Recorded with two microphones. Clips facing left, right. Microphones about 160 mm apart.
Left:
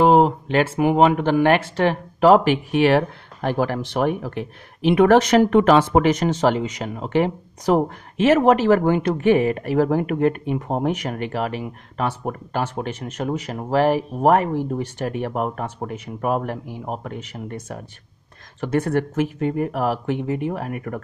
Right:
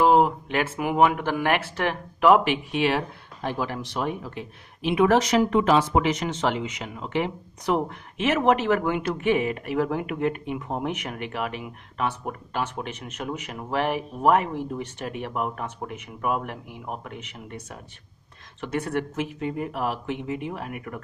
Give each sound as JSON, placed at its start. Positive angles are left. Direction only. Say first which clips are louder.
{"t": 0.0, "sound": "speech", "louder": "left 4 dB", "side_deg": 30}
{"t": 2.7, "sound": "speech", "louder": "left 9 dB", "side_deg": 55}